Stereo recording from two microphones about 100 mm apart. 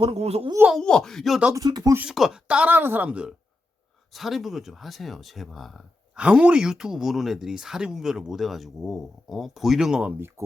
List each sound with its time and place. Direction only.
0.0 s speech: 85° right
0.8 s speech: 5° left (ahead or behind)
1.5 s speech: 40° right (ahead or behind)
2.0 s speech: 5° right (ahead or behind)
4.1 s speech: centre (ahead or behind)
6.1 s speech: 10° right (ahead or behind)
10.2 s speech: 25° right (ahead or behind)